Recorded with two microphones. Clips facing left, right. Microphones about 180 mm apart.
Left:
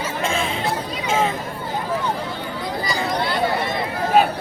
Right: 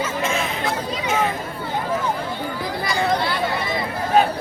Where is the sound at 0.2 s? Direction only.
30° left (ahead or behind).